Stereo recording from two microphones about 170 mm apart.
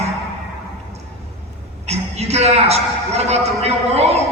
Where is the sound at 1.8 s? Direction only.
40° right (ahead or behind).